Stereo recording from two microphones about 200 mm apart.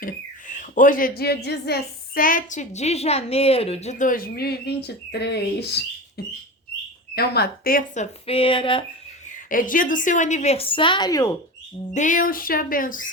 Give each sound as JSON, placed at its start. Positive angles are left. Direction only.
{"t": 0.0, "sound": "speech", "side_deg": 40}
{"t": 8.3, "sound": "speech", "side_deg": 25}
{"t": 9.2, "sound": "a woman's voice", "side_deg": 40}
{"t": 11.9, "sound": "speech", "side_deg": 40}